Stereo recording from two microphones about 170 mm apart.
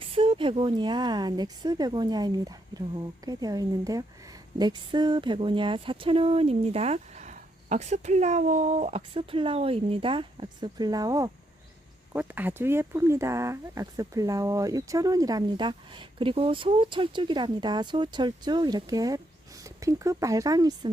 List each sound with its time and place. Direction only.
0.0 s speech: 30° right (ahead or behind)
12.1 s speech: 10° right (ahead or behind)